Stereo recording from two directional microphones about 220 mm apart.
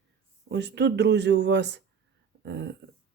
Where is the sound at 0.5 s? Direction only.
50° right (ahead or behind).